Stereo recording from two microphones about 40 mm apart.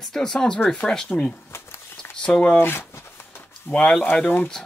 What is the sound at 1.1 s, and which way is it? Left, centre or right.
Speech, left.